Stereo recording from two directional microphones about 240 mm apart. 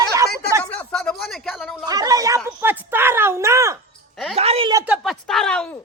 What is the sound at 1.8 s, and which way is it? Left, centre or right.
Speech, centre.